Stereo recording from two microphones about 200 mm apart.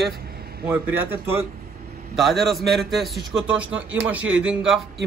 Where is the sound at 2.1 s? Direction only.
Centre (ahead or behind).